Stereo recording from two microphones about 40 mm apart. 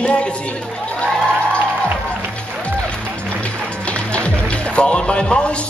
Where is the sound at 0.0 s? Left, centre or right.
Left.